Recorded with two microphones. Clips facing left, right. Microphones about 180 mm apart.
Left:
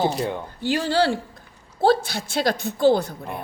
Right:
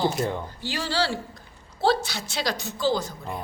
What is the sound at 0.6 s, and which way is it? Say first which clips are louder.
Speech: left 8 dB; 55° left (ahead or behind).